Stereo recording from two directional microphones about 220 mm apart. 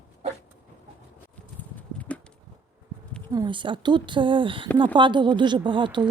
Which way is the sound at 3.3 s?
20° right (ahead or behind).